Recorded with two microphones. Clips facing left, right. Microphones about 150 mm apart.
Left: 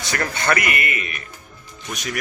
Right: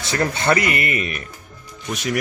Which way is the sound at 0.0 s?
25° right (ahead or behind).